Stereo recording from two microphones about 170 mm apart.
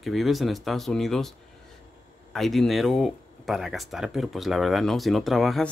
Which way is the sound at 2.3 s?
Centre (ahead or behind).